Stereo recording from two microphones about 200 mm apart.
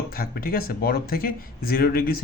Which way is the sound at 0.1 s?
50° left (ahead or behind).